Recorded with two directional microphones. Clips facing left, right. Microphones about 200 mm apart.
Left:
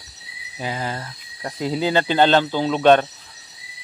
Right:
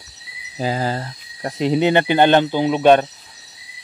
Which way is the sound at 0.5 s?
35° right (ahead or behind).